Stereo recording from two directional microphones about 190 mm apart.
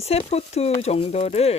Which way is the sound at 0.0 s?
35° left (ahead or behind).